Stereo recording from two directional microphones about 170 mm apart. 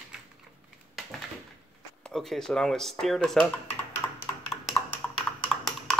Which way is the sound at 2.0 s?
Centre (ahead or behind).